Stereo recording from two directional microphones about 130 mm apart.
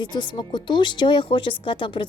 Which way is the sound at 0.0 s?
35° left (ahead or behind).